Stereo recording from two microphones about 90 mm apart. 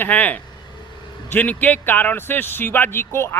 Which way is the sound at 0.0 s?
15° left (ahead or behind).